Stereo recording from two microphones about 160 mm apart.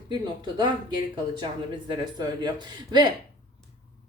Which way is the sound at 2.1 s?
25° right (ahead or behind).